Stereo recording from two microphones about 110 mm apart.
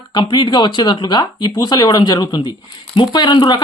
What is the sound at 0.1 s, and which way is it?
Speech, 45° left (ahead or behind).